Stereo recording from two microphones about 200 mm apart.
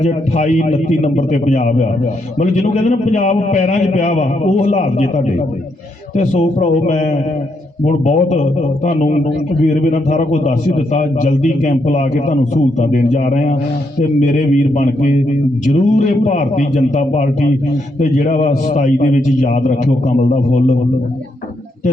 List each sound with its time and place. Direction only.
0.0 s a man's voice: 35° left (ahead or behind)